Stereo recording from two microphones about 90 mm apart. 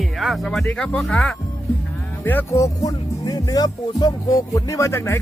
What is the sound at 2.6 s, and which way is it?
Speech, 40° left (ahead or behind).